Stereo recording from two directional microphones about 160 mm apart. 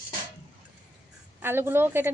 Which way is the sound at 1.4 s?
15° right (ahead or behind).